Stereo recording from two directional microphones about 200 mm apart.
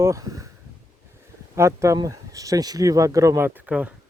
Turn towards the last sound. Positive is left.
turn(degrees=-5)  # may be behind; listen again after turning